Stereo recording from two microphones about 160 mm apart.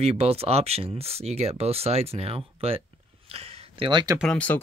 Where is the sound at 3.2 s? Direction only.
40° right (ahead or behind).